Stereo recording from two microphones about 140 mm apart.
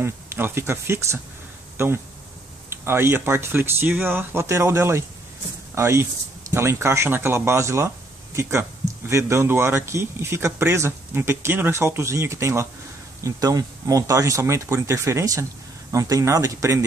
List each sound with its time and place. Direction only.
0.0 s speech: 15° right (ahead or behind)